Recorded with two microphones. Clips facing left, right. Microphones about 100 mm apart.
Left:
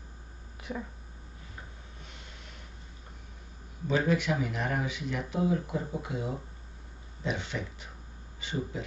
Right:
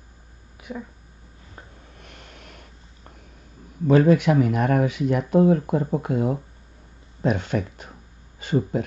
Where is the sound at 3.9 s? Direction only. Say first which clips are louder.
Right 11 dB; 55° right (ahead or behind).